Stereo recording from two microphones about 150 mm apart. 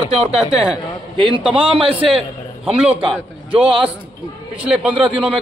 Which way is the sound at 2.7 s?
40° right (ahead or behind).